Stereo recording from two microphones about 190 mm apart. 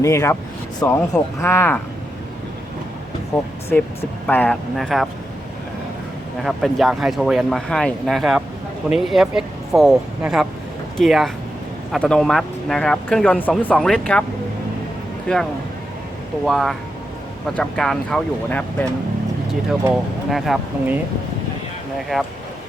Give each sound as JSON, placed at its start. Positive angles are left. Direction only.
{"t": 0.0, "sound": "speech", "side_deg": 15}
{"t": 4.3, "sound": "speech", "side_deg": 10}
{"t": 6.4, "sound": "speech", "side_deg": 0}
{"t": 15.3, "sound": "speech", "side_deg": 5}
{"t": 16.5, "sound": "speech", "side_deg": 0}
{"t": 19.9, "sound": "speech", "side_deg": 0}
{"t": 22.1, "sound": "speech", "side_deg": 0}